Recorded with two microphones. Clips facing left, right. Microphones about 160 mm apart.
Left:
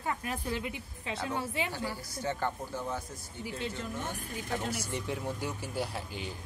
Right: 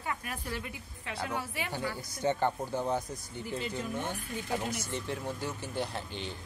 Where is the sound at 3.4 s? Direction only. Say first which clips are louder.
Even; centre (ahead or behind).